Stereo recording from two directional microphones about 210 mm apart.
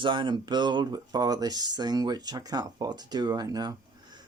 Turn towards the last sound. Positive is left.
turn(degrees=-20)  # may be behind; listen again after turning